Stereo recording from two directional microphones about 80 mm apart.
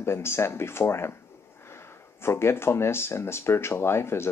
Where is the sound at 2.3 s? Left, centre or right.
Left.